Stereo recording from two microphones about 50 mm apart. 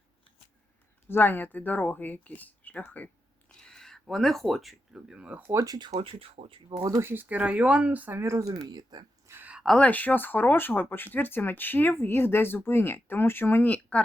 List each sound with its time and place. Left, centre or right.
1.0 s speech: left
3.6 s a sound: centre
4.1 s speech: centre
5.1 s speech: right
5.4 s speech: right
7.0 s speech: right
7.3 s speech: right
8.1 s speech: right
9.7 s speech: left
13.7 s speech: left